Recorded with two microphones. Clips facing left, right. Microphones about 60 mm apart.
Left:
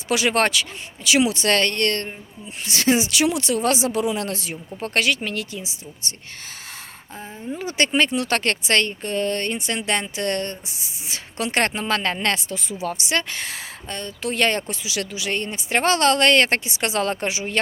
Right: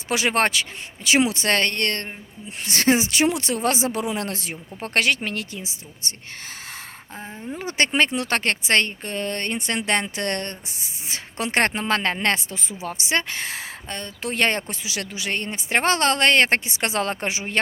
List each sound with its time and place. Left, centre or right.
0.1 s speech: right
7.6 s speech: right